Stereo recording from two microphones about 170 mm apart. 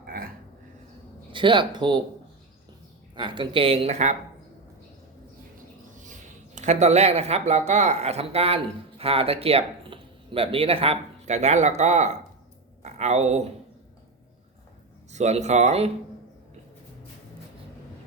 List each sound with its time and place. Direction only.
0.0 s a sound: 60° right (ahead or behind)
1.3 s speech: 30° right (ahead or behind)
3.2 s speech: 30° right (ahead or behind)
5.5 s speech: 50° right (ahead or behind)
15.1 s speech: 40° right (ahead or behind)